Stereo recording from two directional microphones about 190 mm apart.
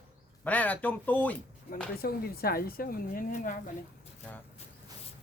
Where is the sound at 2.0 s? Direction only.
55° left (ahead or behind).